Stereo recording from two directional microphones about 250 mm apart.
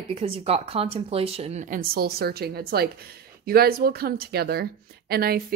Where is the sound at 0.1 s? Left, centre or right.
Right.